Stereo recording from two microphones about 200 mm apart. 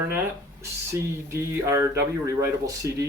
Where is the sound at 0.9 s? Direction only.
15° right (ahead or behind).